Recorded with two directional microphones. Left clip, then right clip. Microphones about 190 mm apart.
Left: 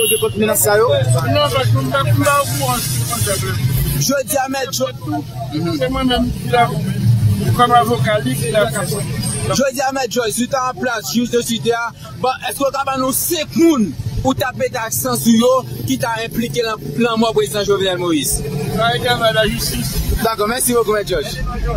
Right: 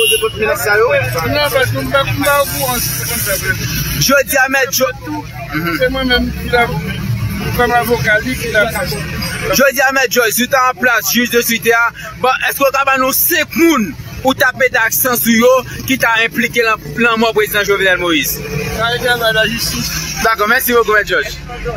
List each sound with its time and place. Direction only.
0.4 s speech: 55° left (ahead or behind)
1.3 s speech: centre (ahead or behind)
4.1 s speech: centre (ahead or behind)